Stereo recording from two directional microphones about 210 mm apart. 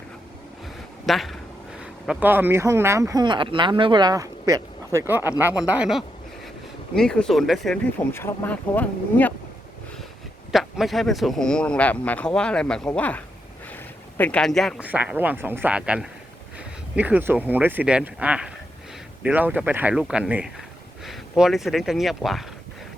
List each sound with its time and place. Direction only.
1.0 s speech: centre (ahead or behind)
10.5 s speech: centre (ahead or behind)